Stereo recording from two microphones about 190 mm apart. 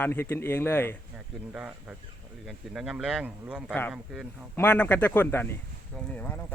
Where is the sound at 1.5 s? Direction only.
5° right (ahead or behind).